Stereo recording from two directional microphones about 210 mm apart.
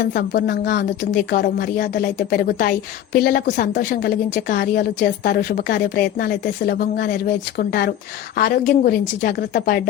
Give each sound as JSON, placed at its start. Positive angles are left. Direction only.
{"t": 0.0, "sound": "speech", "side_deg": 50}